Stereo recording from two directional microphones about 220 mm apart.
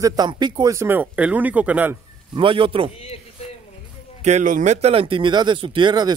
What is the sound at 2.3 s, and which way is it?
Speech, 25° right (ahead or behind).